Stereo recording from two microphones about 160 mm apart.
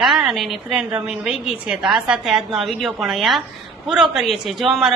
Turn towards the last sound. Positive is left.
turn(degrees=0)  # may be behind; listen again after turning